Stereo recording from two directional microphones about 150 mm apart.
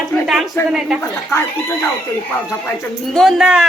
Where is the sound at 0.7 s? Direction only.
5° right (ahead or behind).